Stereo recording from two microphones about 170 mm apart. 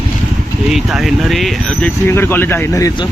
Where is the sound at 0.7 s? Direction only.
Centre (ahead or behind).